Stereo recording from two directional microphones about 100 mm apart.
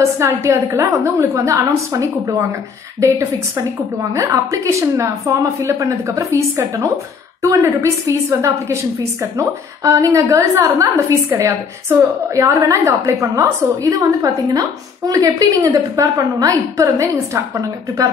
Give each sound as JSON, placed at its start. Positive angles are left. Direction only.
{"t": 0.2, "sound": "a woman's voice", "side_deg": -30}